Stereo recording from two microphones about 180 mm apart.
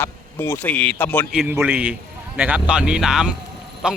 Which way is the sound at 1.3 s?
5° right (ahead or behind).